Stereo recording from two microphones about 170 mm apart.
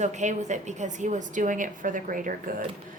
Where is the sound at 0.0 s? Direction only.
45° right (ahead or behind).